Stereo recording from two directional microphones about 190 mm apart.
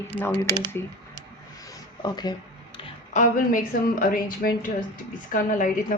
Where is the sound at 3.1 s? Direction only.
40° left (ahead or behind).